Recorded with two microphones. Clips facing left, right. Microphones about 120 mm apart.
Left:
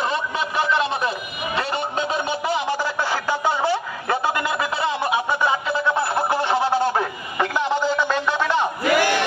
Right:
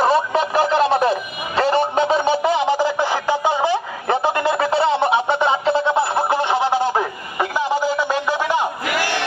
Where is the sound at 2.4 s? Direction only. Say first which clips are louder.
Right 6 dB; 20° right (ahead or behind).